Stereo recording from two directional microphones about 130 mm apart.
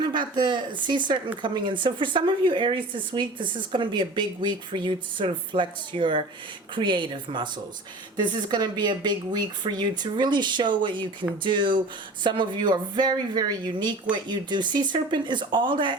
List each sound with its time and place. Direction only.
0.0 s speech: 35° right (ahead or behind)